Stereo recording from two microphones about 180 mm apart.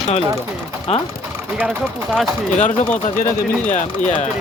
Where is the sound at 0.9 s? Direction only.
35° left (ahead or behind).